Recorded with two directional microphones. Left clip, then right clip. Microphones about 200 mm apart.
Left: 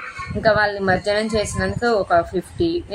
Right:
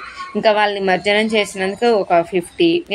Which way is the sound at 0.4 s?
50° right (ahead or behind).